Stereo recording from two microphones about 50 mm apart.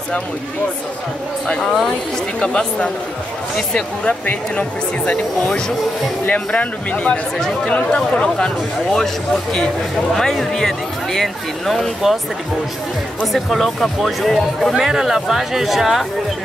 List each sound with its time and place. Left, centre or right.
2.4 s speech: centre
4.3 s speech: left
8.9 s speech: centre
13.2 s speech: centre